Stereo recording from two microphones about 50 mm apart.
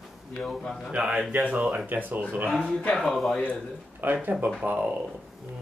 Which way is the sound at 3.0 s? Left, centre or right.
Centre.